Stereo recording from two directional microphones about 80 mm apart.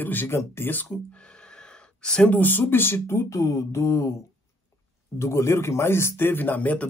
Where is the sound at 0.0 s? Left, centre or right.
Left.